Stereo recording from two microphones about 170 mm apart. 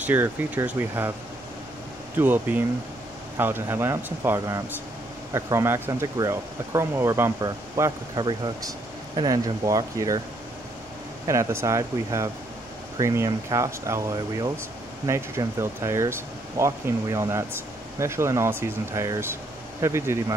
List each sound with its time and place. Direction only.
0.0 s speech: 10° right (ahead or behind)
2.1 s speech: 10° right (ahead or behind)
11.2 s speech: 20° right (ahead or behind)